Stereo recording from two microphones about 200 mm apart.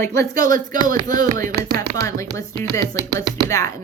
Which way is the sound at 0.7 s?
40° right (ahead or behind).